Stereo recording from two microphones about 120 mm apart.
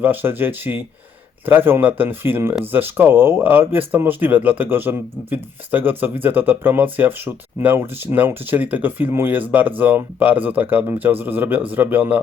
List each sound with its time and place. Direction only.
0.0 s speech: 15° right (ahead or behind)